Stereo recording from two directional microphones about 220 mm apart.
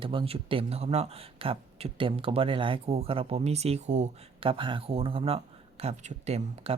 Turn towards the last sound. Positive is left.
turn(degrees=-30)  # may be behind; listen again after turning